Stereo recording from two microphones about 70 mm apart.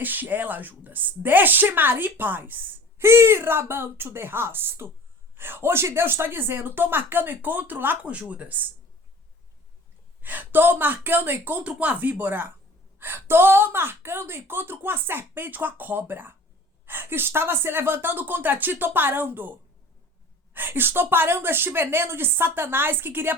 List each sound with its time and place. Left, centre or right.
0.0 s a woman's voice: right
3.0 s a woman's voice: right
10.2 s a woman's voice: right